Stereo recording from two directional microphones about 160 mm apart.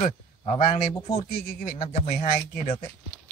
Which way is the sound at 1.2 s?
65° left (ahead or behind).